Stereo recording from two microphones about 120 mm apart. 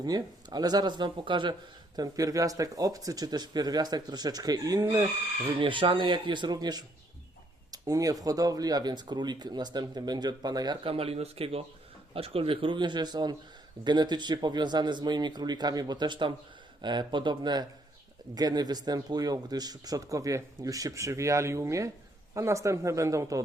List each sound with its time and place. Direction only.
0.0 s speech: 35° right (ahead or behind)
2.0 s speech: 30° right (ahead or behind)
5.5 s speech: 45° right (ahead or behind)
10.8 s speech: 55° right (ahead or behind); by 23.4 s 25° right (ahead or behind)